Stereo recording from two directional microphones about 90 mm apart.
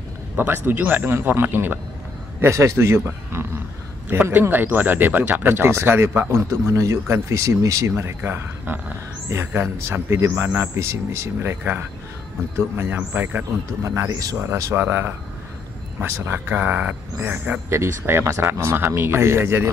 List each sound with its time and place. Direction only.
0.7 s speech: 20° right (ahead or behind)
2.4 s speech: 35° right (ahead or behind)
8.2 s speech: 25° right (ahead or behind)
13.8 s speech: 35° right (ahead or behind)